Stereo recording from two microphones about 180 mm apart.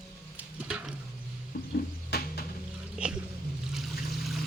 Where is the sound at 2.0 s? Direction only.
60° left (ahead or behind).